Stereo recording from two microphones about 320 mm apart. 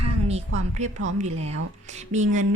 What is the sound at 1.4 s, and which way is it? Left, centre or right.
Speech, right.